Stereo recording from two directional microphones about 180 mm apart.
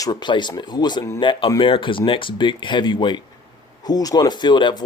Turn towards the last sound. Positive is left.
turn(degrees=25)  # may be behind; listen again after turning